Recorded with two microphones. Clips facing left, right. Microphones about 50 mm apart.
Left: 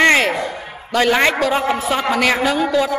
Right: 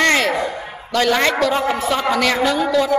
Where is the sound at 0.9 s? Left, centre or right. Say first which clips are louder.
Left 1 dB; centre.